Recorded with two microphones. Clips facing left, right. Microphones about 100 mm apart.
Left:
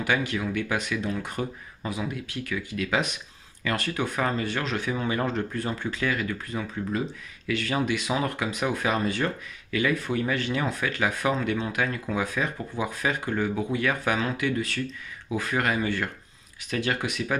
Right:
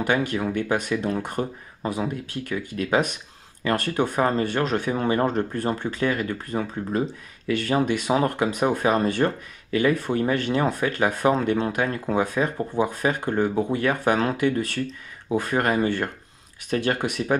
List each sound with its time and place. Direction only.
0.0 s speech: 45° right (ahead or behind)
13.3 s speech: 35° right (ahead or behind)
14.1 s speech: 50° right (ahead or behind)